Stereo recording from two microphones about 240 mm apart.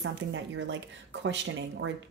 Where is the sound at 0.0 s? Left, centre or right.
Right.